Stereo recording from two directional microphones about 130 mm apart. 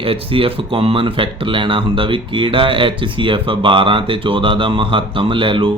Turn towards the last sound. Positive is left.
turn(degrees=-40)  # may be behind; listen again after turning